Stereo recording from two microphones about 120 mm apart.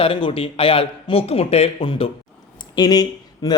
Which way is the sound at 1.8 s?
45° left (ahead or behind).